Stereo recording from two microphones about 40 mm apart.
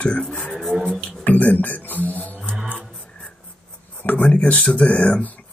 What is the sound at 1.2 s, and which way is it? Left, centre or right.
Speech, left.